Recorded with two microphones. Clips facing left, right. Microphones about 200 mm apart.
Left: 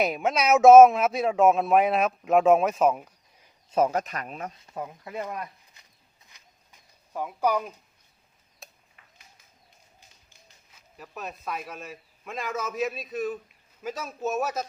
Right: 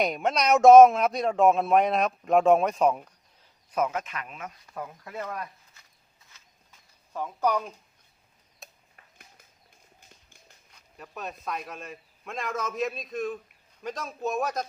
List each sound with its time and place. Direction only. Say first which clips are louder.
0.0 s a man's voice: left 1 dB; 5° left (ahead or behind)
3.7 s speech: left 4 dB; 30° left (ahead or behind)
6.2 s a sound: left 1 dB; 15° left (ahead or behind); by 8.8 s centre (ahead or behind)
10.7 s a man's voice: even; 5° left (ahead or behind)